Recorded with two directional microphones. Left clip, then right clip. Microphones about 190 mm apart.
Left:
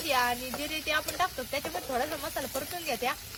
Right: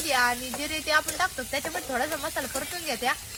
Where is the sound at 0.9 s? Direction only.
35° left (ahead or behind).